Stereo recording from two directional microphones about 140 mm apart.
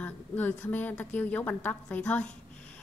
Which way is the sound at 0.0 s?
10° left (ahead or behind).